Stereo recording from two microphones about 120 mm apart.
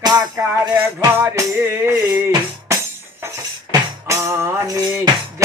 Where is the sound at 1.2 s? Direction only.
20° right (ahead or behind).